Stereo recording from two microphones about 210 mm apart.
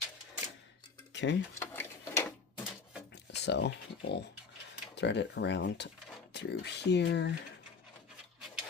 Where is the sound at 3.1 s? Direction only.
55° left (ahead or behind).